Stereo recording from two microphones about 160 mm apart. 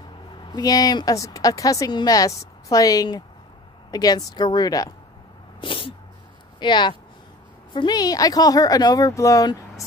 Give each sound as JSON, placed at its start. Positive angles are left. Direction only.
{"t": 0.4, "sound": "speech", "side_deg": 25}
{"t": 5.6, "sound": "sneeze", "side_deg": 30}
{"t": 6.6, "sound": "speech", "side_deg": 30}